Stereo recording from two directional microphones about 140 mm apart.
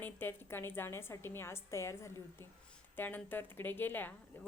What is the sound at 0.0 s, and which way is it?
A woman's voice, 15° left (ahead or behind).